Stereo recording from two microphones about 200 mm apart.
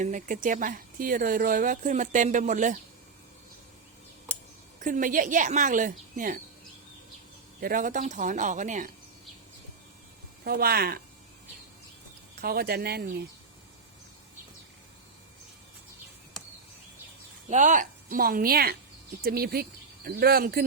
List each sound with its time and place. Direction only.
0.0 s speech: 40° right (ahead or behind)
4.8 s speech: 40° right (ahead or behind)
7.6 s speech: 45° right (ahead or behind)
10.4 s a woman's voice: 50° right (ahead or behind)
12.4 s a woman's voice: 50° right (ahead or behind)
17.5 s a woman's voice: 40° right (ahead or behind)